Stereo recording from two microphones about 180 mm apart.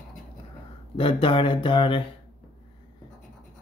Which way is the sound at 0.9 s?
30° left (ahead or behind).